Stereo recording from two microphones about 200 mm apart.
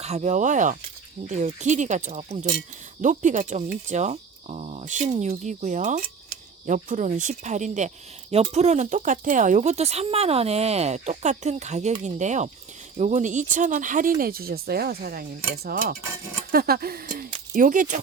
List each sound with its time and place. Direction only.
0.0 s speech: 35° right (ahead or behind)